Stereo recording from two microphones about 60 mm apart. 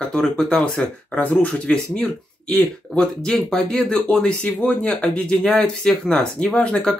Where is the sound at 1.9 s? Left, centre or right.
Centre.